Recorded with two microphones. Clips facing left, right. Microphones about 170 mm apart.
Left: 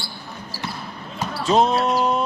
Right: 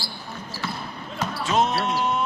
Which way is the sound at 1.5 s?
35° left (ahead or behind).